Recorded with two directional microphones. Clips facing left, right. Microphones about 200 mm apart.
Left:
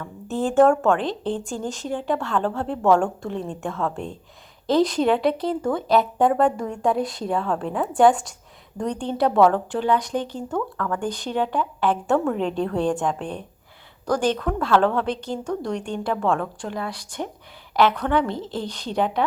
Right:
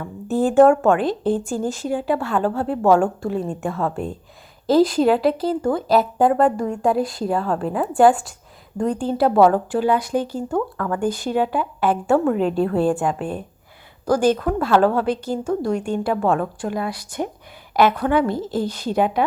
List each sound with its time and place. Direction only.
0.6 s a woman's voice: 10° right (ahead or behind)